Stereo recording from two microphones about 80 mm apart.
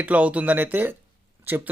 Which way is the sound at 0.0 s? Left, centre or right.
Centre.